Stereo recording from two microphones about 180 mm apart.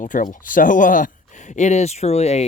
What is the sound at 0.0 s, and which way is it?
Speech, 45° left (ahead or behind).